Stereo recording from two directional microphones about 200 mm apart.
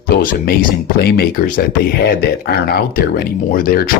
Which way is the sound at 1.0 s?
50° left (ahead or behind).